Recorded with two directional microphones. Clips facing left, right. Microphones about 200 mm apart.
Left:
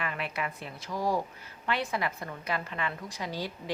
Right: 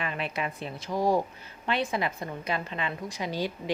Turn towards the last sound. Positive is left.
turn(degrees=-20)  # may be behind; listen again after turning